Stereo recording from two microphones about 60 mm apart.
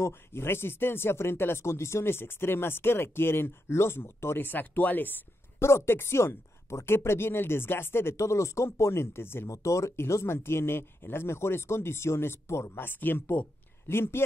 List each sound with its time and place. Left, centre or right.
0.0 s speech: left
5.6 s a woman's voice: left
9.5 s a woman's voice: left
12.8 s speech: left